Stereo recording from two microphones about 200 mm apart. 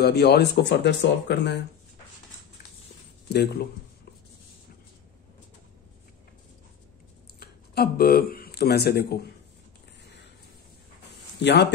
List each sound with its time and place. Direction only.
0.0 s speech: 55° left (ahead or behind)
3.3 s speech: 55° left (ahead or behind)
7.3 s speech: 50° left (ahead or behind)
11.3 s speech: 60° left (ahead or behind)